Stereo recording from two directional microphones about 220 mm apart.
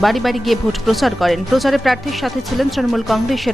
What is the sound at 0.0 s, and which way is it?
Speech, centre (ahead or behind).